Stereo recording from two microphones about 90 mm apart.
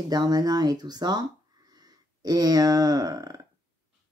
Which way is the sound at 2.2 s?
45° right (ahead or behind).